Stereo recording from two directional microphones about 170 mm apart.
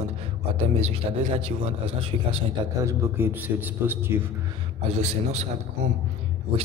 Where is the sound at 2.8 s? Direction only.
15° right (ahead or behind).